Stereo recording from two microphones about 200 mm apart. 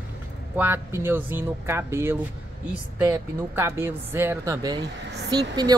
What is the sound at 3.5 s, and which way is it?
Speech, 10° right (ahead or behind).